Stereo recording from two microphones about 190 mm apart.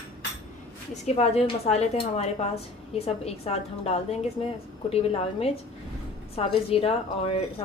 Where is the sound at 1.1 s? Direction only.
35° left (ahead or behind).